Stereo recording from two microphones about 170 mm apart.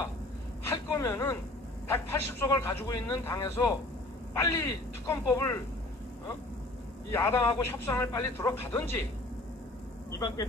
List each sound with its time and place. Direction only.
0.7 s a sound: 15° left (ahead or behind)
1.9 s a man's voice: 15° left (ahead or behind)
7.1 s a man's voice: 15° left (ahead or behind)
10.1 s a man's voice: 15° left (ahead or behind)